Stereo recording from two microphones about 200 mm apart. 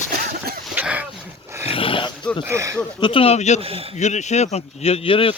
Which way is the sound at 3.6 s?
30° right (ahead or behind).